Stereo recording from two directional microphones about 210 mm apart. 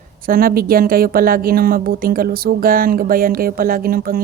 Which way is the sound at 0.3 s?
45° right (ahead or behind).